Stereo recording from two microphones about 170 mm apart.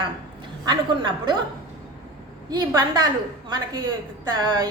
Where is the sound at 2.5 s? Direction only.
25° right (ahead or behind).